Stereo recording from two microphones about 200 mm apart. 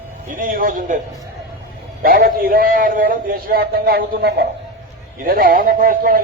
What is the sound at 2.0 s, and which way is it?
A man's voice, 45° right (ahead or behind).